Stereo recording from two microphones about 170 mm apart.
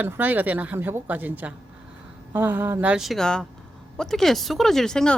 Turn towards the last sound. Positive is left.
turn(degrees=5)  # may be behind; listen again after turning